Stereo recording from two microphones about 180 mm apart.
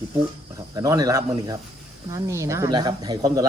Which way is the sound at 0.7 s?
20° right (ahead or behind).